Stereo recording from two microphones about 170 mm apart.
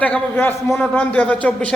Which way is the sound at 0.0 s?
10° left (ahead or behind).